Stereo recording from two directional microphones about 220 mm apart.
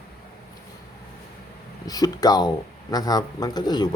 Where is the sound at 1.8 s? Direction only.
15° left (ahead or behind).